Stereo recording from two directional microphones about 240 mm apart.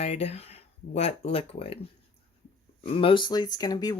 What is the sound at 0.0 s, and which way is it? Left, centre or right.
Speech, left.